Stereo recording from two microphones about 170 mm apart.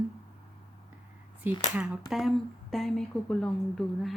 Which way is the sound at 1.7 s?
5° right (ahead or behind).